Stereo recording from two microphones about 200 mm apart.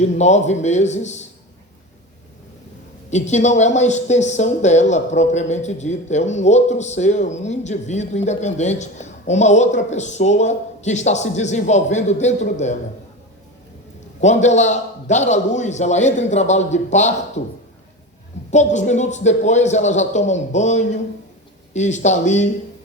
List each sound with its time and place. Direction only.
0.0 s speech: 35° left (ahead or behind)
3.1 s speech: 35° left (ahead or behind)
14.2 s speech: 35° left (ahead or behind)
18.5 s speech: 35° left (ahead or behind)